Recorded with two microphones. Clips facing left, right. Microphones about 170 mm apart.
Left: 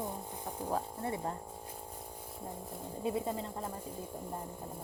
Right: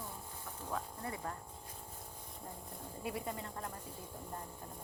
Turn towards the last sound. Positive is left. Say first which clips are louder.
# left 5 dB
turn(degrees=20)  # may be behind; listen again after turning